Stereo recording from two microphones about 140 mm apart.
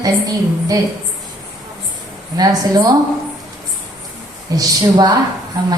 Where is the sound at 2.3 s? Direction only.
25° right (ahead or behind).